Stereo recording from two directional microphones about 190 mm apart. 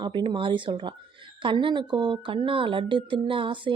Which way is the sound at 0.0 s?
25° right (ahead or behind).